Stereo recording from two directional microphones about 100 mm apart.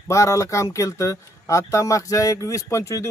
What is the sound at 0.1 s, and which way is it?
Speech, 30° left (ahead or behind).